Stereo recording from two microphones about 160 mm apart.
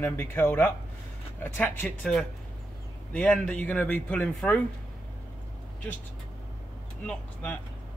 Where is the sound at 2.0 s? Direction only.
Centre (ahead or behind).